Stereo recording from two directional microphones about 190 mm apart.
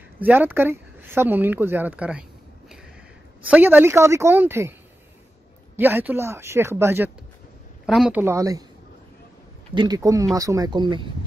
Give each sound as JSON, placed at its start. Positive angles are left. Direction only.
{"t": 0.2, "sound": "speech", "side_deg": -10}
{"t": 3.4, "sound": "speech", "side_deg": -10}
{"t": 5.8, "sound": "speech", "side_deg": -10}
{"t": 7.8, "sound": "speech", "side_deg": 0}
{"t": 9.8, "sound": "speech", "side_deg": -20}